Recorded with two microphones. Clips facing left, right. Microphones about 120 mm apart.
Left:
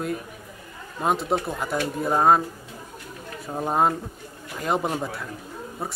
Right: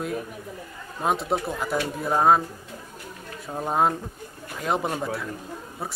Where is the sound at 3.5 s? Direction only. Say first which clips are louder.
Left 1 dB; centre (ahead or behind).